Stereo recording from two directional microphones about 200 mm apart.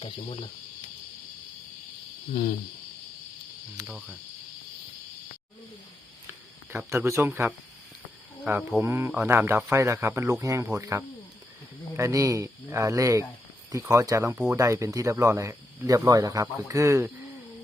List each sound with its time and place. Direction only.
2.3 s speech: 40° left (ahead or behind)
6.7 s speech: 15° right (ahead or behind)